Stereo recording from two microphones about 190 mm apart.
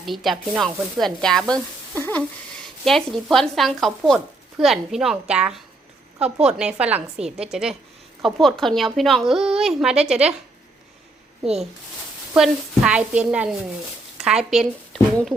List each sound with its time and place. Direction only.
0.0 s speech: centre (ahead or behind)
2.0 s a sound: 10° left (ahead or behind)
2.8 s speech: centre (ahead or behind)
12.3 s a woman's voice: 5° right (ahead or behind)